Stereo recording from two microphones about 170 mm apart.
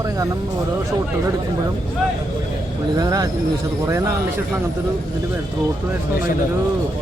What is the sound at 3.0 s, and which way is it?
Speech, 20° right (ahead or behind).